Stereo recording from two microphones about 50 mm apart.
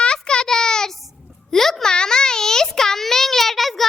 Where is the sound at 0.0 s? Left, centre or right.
Centre.